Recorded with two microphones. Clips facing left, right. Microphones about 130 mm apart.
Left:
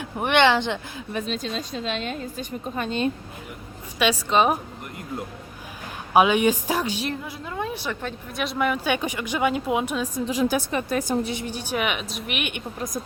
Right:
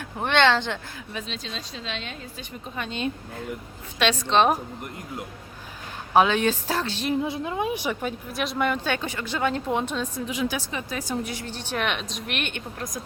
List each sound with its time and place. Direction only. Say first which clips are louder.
0.0 s speech: left 2 dB; 15° left (ahead or behind)
1.1 s a woman's voice: left 7 dB; 50° left (ahead or behind)
3.9 s speech: even; 10° left (ahead or behind)
6.1 s speech: left 2 dB; 15° left (ahead or behind)
7.2 s a woman's voice: right 5 dB; 20° right (ahead or behind)
8.3 s speech: left 2 dB; centre (ahead or behind)
8.9 s speech: left 3 dB; 15° left (ahead or behind)
10.2 s a woman's voice: left 7 dB; 40° left (ahead or behind)
10.6 s a woman's voice: left 7 dB; 55° left (ahead or behind)
11.2 s a woman's voice: left 4 dB; 25° left (ahead or behind)
11.4 s speech: left 2 dB; 10° left (ahead or behind)